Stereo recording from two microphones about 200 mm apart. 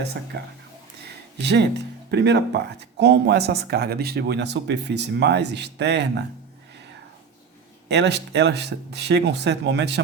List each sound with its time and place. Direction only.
0.3 s speech: 55° right (ahead or behind)
7.9 s speech: 60° right (ahead or behind)